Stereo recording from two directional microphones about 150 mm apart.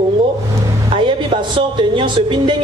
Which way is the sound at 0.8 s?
35° right (ahead or behind).